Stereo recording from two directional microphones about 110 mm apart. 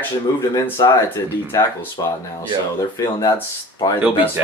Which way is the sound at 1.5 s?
25° left (ahead or behind).